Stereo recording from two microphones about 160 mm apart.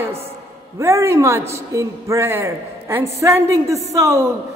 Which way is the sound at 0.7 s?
15° right (ahead or behind).